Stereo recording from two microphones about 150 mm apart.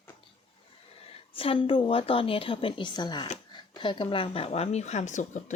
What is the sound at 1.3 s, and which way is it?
A woman's voice, 35° left (ahead or behind).